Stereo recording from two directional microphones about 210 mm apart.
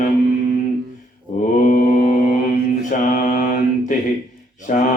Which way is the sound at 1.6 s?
40° left (ahead or behind).